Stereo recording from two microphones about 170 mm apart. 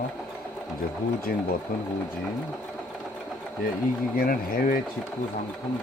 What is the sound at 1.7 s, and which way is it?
Speech, 55° left (ahead or behind).